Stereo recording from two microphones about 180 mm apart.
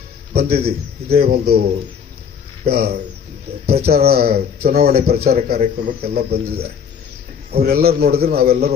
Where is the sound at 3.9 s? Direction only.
60° right (ahead or behind).